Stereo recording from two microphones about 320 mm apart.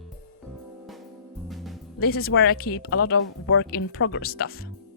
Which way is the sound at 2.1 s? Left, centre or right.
Left.